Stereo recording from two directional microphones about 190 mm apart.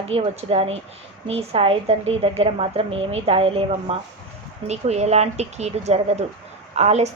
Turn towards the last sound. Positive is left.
turn(degrees=-35)  # may be behind; listen again after turning